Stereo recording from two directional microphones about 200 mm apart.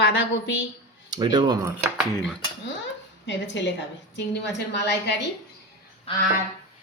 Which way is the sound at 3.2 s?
60° left (ahead or behind).